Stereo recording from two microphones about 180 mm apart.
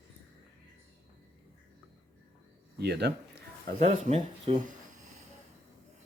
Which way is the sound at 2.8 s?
65° right (ahead or behind).